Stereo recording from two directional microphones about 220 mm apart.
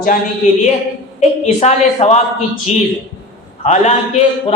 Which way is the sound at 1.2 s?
30° left (ahead or behind).